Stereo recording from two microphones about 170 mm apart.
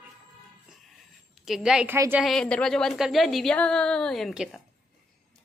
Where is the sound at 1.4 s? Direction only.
5° right (ahead or behind).